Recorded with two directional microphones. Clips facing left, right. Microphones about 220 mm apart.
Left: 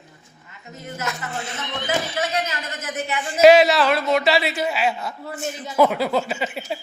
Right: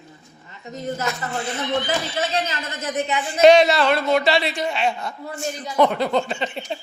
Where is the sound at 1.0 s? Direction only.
Centre (ahead or behind).